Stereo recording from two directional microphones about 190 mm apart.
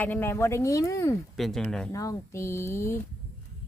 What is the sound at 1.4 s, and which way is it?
Speech, centre (ahead or behind).